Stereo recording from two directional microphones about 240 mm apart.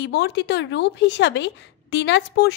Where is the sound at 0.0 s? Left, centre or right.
Left.